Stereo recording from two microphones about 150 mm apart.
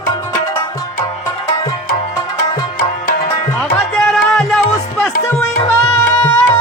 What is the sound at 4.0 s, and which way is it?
Music, centre (ahead or behind).